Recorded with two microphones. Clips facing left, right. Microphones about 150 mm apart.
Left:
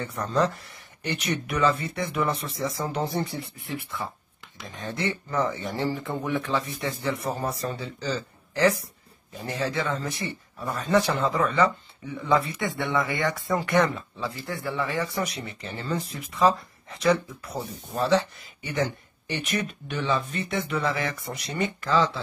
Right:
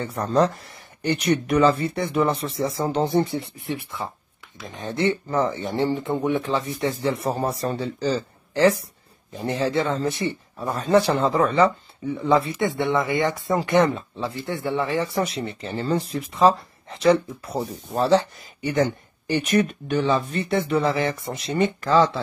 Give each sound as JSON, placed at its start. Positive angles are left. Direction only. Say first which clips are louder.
{"t": 0.0, "sound": "speech", "louder": "right 4 dB", "side_deg": -35}
{"t": 19.2, "sound": "speech", "louder": "right 9 dB", "side_deg": -40}
{"t": 21.8, "sound": "speech", "louder": "right 4 dB", "side_deg": -45}